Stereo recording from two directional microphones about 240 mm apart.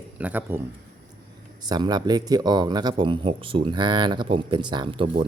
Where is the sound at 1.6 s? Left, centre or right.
Centre.